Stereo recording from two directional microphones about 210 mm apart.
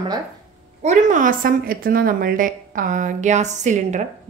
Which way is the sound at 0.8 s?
35° right (ahead or behind).